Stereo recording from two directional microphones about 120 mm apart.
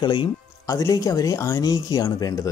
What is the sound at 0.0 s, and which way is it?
Speech, 40° left (ahead or behind).